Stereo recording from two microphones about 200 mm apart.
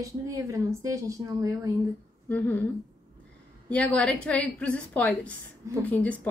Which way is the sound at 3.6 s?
5° left (ahead or behind).